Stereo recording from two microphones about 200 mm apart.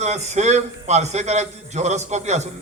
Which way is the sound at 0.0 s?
35° right (ahead or behind).